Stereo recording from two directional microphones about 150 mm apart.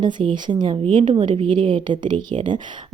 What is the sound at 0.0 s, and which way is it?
A woman's voice, 30° right (ahead or behind).